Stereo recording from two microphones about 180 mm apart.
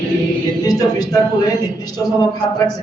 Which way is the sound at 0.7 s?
20° left (ahead or behind).